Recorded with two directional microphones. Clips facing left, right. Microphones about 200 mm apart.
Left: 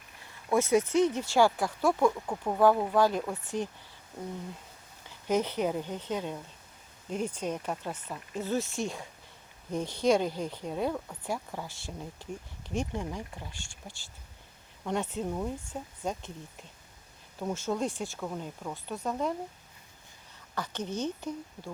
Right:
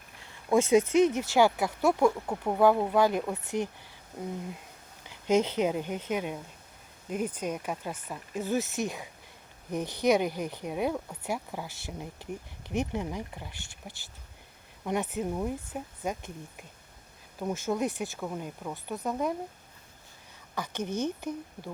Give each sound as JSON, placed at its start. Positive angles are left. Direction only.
{"t": 0.5, "sound": "speech", "side_deg": -20}
{"t": 1.5, "sound": "speech", "side_deg": -10}
{"t": 5.0, "sound": "speech", "side_deg": -20}
{"t": 19.0, "sound": "speech", "side_deg": -5}
{"t": 20.6, "sound": "speech", "side_deg": -15}